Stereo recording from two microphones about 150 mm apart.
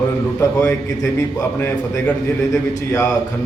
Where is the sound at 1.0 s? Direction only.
20° left (ahead or behind).